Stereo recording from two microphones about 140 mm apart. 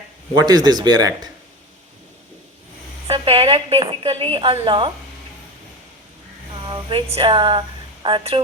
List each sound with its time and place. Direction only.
0.3 s speech: 30° right (ahead or behind)
3.1 s speech: 40° right (ahead or behind)
6.5 s a sound: 35° right (ahead or behind)
7.1 s speech: 40° right (ahead or behind)